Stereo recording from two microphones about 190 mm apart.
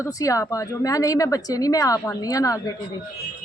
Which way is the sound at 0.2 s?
15° left (ahead or behind).